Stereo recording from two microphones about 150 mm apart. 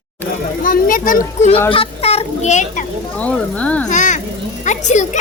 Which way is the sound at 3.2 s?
10° left (ahead or behind).